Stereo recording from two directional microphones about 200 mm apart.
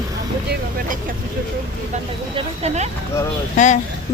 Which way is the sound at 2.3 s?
30° right (ahead or behind).